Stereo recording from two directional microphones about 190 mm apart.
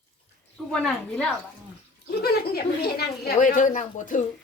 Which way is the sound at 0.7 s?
5° left (ahead or behind).